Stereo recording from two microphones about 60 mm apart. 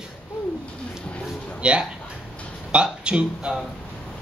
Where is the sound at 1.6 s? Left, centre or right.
Centre.